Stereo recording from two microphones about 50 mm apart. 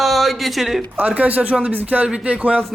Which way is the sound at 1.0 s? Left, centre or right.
Right.